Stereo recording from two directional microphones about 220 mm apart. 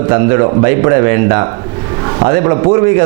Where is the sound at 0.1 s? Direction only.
20° right (ahead or behind).